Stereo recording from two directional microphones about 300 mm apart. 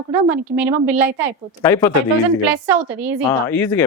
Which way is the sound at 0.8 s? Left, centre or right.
Right.